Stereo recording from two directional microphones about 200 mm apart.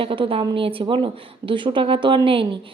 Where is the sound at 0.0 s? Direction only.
25° right (ahead or behind).